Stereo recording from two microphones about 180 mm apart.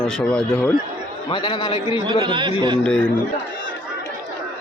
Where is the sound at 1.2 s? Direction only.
30° left (ahead or behind).